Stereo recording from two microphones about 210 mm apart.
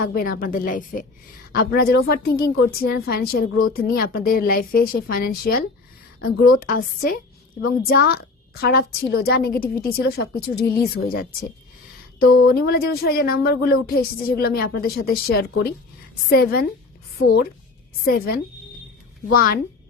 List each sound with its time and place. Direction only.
0.0 s a woman's voice: 45° left (ahead or behind)